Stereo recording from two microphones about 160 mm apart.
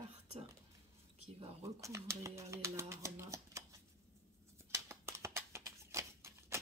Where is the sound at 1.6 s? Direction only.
20° right (ahead or behind).